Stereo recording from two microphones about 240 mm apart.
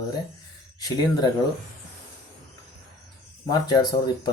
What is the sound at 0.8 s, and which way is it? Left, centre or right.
Speech, centre.